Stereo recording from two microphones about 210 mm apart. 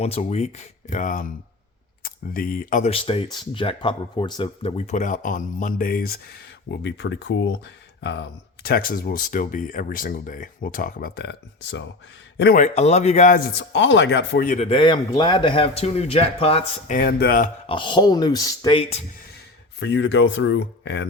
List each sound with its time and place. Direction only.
0.0 s speech: 30° left (ahead or behind); by 12.6 s 45° left (ahead or behind)
12.6 s speech: 30° left (ahead or behind); by 14.4 s 55° left (ahead or behind)
14.4 s a man's voice: 35° left (ahead or behind)
17.7 s a man's voice: 25° left (ahead or behind)
19.8 s speech: 60° left (ahead or behind)